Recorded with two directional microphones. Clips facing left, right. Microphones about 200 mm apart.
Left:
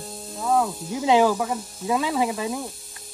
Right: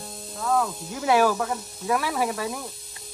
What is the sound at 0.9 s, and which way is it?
Speech, 20° left (ahead or behind).